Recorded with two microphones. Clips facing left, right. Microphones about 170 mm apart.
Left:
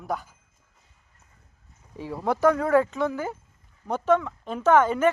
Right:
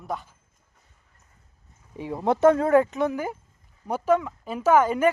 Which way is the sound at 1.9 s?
20° right (ahead or behind).